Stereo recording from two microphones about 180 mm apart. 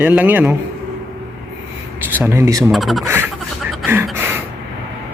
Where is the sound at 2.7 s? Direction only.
Centre (ahead or behind).